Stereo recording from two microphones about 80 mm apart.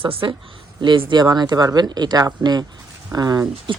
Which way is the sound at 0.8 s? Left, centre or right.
Right.